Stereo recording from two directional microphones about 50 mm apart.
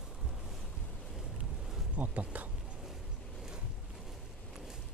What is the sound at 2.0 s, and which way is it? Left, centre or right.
Speech, right.